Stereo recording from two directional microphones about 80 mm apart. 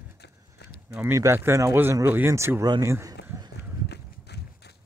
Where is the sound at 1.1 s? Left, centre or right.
Right.